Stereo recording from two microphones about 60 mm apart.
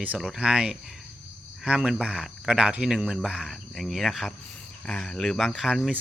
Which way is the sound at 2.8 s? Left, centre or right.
Centre.